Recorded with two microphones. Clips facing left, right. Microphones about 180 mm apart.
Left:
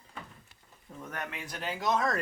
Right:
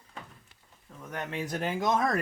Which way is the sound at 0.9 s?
10° left (ahead or behind).